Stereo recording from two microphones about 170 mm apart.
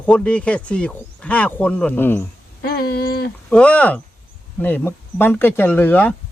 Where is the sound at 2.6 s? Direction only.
65° left (ahead or behind).